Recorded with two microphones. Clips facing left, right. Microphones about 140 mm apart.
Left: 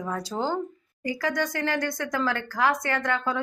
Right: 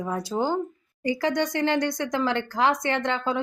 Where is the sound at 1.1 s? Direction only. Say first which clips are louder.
Right 3 dB; 25° right (ahead or behind).